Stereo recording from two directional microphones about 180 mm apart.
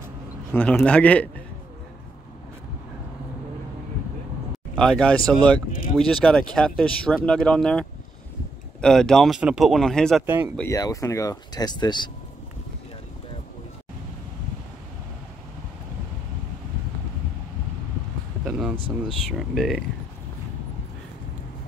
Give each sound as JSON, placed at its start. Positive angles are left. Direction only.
{"t": 0.5, "sound": "a man's voice", "side_deg": 5}
{"t": 4.7, "sound": "speech", "side_deg": 5}
{"t": 8.8, "sound": "speech", "side_deg": 5}
{"t": 10.2, "sound": "speech", "side_deg": -10}
{"t": 10.7, "sound": "speech", "side_deg": 20}
{"t": 18.4, "sound": "a sound", "side_deg": -5}
{"t": 19.3, "sound": "speech", "side_deg": 0}